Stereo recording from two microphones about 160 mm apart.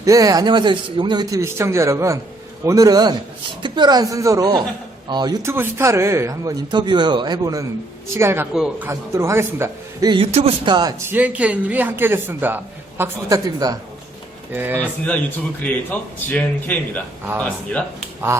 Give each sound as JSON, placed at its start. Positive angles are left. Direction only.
{"t": 0.0, "sound": "a woman's voice", "side_deg": -20}
{"t": 8.5, "sound": "a man's voice", "side_deg": -5}
{"t": 8.9, "sound": "a woman's voice", "side_deg": -15}
{"t": 10.1, "sound": "a man's voice", "side_deg": -35}
{"t": 10.8, "sound": "speech", "side_deg": -25}
{"t": 11.1, "sound": "a woman's voice", "side_deg": -10}
{"t": 15.6, "sound": "a man's voice", "side_deg": 10}
{"t": 18.3, "sound": "goose", "side_deg": -15}